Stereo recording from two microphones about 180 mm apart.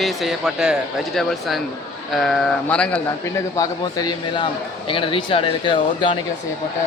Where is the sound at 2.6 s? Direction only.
5° left (ahead or behind).